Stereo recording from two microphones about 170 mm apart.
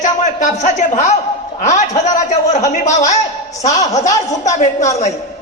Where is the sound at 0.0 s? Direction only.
45° left (ahead or behind).